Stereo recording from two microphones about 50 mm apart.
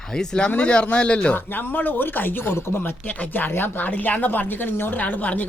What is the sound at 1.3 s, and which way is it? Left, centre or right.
A woman's voice, left.